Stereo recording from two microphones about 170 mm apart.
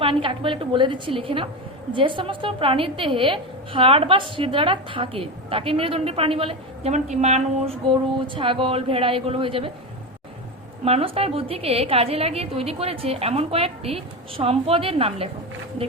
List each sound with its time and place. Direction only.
0.0 s a woman's voice: 30° right (ahead or behind)
10.8 s a woman's voice: 35° right (ahead or behind)